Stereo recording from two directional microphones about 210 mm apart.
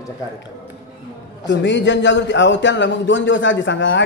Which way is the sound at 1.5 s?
60° left (ahead or behind).